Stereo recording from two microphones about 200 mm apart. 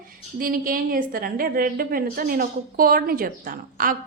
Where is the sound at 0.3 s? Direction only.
45° right (ahead or behind).